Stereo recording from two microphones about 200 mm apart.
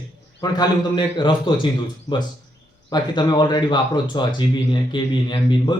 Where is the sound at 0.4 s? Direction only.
20° left (ahead or behind).